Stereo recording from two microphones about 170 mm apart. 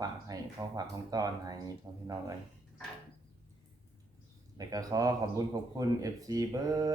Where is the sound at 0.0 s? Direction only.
20° right (ahead or behind).